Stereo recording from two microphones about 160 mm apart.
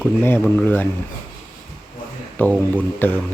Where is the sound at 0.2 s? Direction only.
15° left (ahead or behind).